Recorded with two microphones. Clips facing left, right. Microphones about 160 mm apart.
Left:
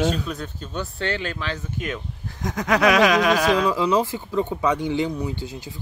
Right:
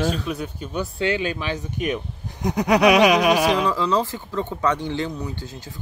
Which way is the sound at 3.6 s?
15° left (ahead or behind).